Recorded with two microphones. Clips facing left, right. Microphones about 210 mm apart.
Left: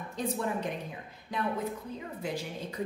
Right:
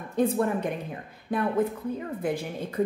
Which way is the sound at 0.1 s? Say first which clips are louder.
Right 9 dB; 55° right (ahead or behind).